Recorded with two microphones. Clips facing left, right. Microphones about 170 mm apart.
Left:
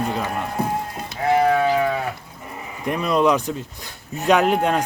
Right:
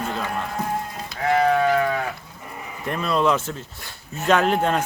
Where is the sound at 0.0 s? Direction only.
15° left (ahead or behind).